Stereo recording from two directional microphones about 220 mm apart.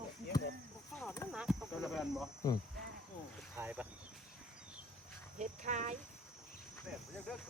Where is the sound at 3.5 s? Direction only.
5° right (ahead or behind).